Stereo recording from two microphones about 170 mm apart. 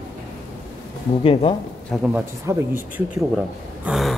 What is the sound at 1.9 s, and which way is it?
Speech, 5° right (ahead or behind).